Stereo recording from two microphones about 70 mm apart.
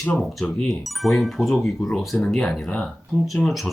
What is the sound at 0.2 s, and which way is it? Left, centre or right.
Speech, centre.